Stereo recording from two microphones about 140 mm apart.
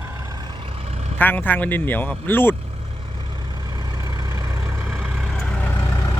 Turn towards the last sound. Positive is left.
turn(degrees=20)  # may be behind; listen again after turning